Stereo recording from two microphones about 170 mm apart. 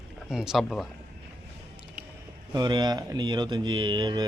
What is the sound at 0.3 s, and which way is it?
Speech, 5° right (ahead or behind).